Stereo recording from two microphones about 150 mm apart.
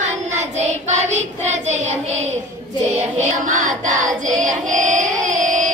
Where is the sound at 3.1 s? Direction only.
55° right (ahead or behind).